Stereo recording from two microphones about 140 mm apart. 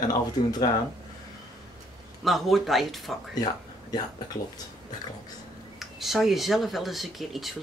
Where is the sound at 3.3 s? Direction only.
30° left (ahead or behind).